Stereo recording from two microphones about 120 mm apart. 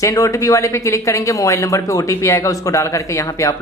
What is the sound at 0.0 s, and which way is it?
Speech, 30° left (ahead or behind).